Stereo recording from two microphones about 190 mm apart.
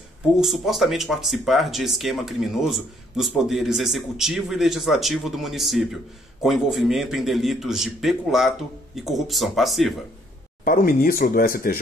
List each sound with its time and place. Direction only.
0.4 s speech: centre (ahead or behind)
10.6 s speech: 45° left (ahead or behind)